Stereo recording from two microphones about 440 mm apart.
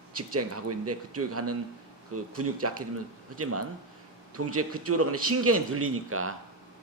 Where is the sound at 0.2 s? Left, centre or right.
Right.